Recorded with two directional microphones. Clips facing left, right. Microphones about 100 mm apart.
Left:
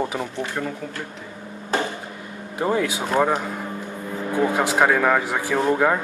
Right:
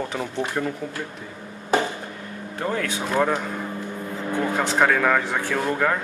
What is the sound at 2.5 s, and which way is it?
Speech, 15° left (ahead or behind).